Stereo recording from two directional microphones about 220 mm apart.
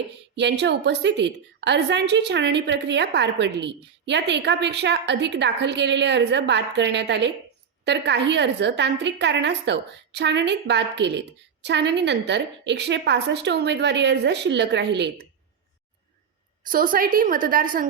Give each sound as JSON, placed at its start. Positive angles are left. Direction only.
{"t": 0.3, "sound": "a woman's voice", "side_deg": -50}
{"t": 16.6, "sound": "a woman's voice", "side_deg": -40}